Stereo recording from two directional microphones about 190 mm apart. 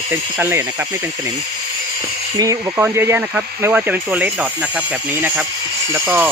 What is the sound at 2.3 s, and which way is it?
Speech, 20° right (ahead or behind).